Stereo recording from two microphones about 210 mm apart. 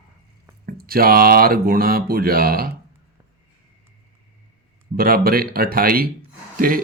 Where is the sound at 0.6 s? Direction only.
45° right (ahead or behind).